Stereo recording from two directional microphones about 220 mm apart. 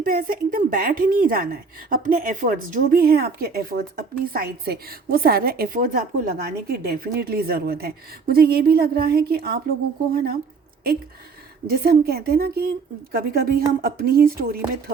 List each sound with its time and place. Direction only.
0.0 s a woman's voice: 40° right (ahead or behind)
11.6 s a woman's voice: 45° right (ahead or behind)